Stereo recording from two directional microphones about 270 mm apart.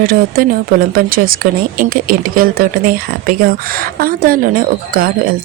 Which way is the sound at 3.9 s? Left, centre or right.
Right.